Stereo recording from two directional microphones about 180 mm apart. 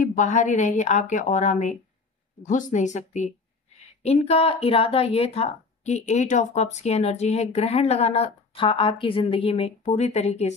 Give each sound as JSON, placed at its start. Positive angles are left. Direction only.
{"t": 0.0, "sound": "speech", "side_deg": 45}